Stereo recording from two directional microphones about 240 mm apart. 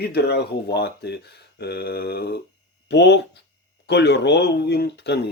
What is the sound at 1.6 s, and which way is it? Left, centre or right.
Mantra, left.